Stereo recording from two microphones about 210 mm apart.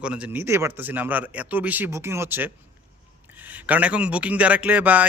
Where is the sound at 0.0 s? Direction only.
5° right (ahead or behind).